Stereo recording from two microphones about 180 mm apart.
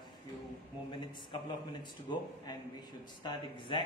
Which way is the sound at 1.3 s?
25° left (ahead or behind).